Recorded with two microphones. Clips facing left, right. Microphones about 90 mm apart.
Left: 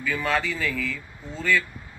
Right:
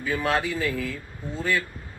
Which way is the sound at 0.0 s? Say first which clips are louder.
Right 1 dB; 25° right (ahead or behind).